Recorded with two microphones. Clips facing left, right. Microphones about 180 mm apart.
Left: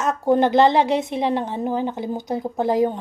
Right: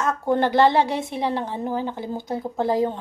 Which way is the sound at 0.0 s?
20° left (ahead or behind).